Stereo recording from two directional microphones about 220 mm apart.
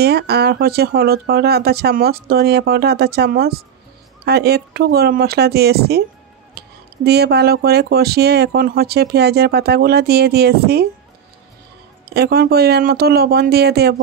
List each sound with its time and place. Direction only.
0.0 s speech: 45° right (ahead or behind)
6.6 s a sound: 45° right (ahead or behind)
7.1 s speech: 45° right (ahead or behind)
12.1 s speech: 45° right (ahead or behind)